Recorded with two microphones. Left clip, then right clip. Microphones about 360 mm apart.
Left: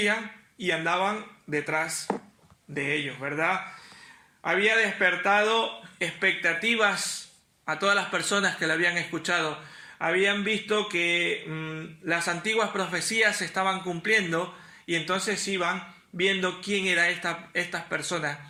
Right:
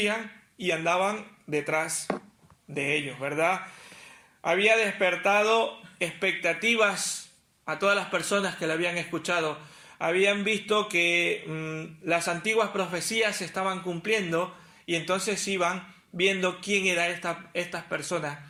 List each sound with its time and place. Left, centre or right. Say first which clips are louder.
0.0 s a man's voice: left 2 dB; centre
7.6 s mantra: left 1 dB; centre
14.8 s a man's voice: even; centre
16.1 s mantra: even; centre